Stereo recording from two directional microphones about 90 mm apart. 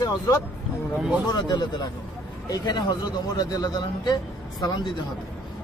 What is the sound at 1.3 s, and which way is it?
Speech, 50° left (ahead or behind).